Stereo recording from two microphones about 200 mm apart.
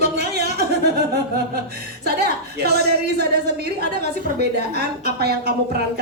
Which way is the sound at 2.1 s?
50° right (ahead or behind).